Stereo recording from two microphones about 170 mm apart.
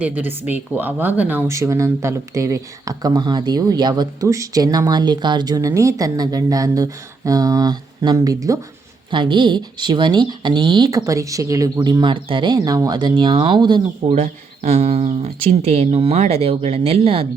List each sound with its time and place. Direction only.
0.0 s speech: 10° right (ahead or behind); by 13.8 s 25° right (ahead or behind)
14.1 s speech: 40° right (ahead or behind)